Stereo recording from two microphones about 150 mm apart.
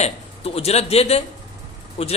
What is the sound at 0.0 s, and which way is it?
A man's voice, 45° left (ahead or behind).